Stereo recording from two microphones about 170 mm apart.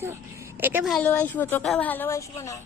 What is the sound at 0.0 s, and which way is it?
Speech, 15° right (ahead or behind).